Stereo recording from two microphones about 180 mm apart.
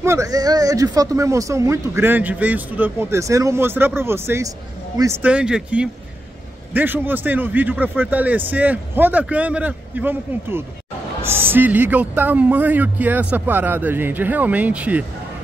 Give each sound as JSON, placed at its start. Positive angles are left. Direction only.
{"t": 0.0, "sound": "speech", "side_deg": -15}